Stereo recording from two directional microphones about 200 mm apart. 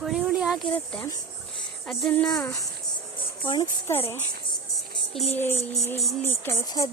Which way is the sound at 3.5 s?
15° left (ahead or behind).